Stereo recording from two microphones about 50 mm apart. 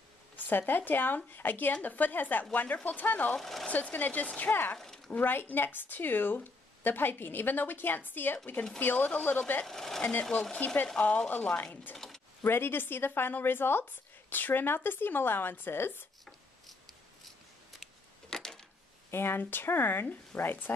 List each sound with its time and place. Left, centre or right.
0.4 s speech: left
3.3 s speech: centre
3.6 s speech: left
4.7 s a sound: centre
5.1 s speech: left
9.7 s speech: centre
10.6 s speech: left
12.4 s speech: left
16.3 s a sound: centre
18.3 s a sound: centre
19.0 s speech: left